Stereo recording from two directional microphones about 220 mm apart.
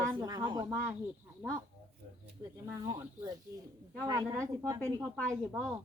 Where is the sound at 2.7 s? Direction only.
15° right (ahead or behind).